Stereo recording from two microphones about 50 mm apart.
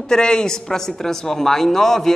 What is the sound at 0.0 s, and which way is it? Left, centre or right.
A woman's voice, centre.